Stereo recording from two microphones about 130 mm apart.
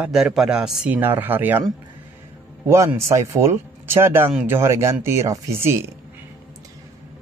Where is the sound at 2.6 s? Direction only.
20° right (ahead or behind).